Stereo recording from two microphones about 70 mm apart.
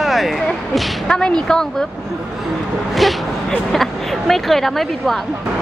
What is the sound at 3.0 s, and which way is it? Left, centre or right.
Speech, centre.